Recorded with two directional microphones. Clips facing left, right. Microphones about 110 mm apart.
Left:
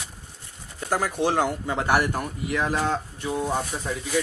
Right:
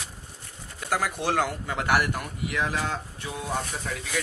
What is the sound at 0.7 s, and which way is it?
Speech, 25° left (ahead or behind).